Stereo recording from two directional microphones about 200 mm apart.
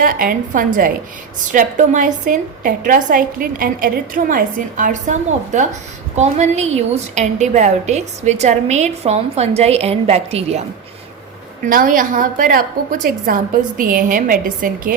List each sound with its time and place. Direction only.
0.0 s a woman's voice: 45° right (ahead or behind)
11.6 s a woman's voice: 40° right (ahead or behind)